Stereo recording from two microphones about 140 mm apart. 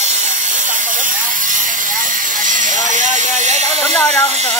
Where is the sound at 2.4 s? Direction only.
65° right (ahead or behind).